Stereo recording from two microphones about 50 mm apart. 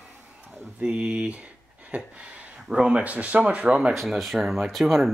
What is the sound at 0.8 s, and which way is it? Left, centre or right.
Speech, centre.